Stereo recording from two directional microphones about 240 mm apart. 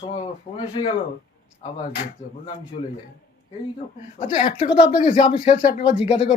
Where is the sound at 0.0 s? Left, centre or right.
Left.